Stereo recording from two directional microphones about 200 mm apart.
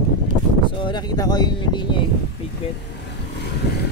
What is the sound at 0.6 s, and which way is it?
Speech, 20° left (ahead or behind).